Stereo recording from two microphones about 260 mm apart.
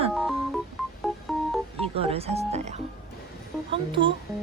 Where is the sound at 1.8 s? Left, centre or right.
Right.